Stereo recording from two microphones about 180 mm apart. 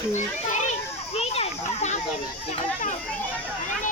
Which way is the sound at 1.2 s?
35° left (ahead or behind).